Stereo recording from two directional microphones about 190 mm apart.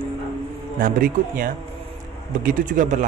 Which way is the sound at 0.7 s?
45° right (ahead or behind).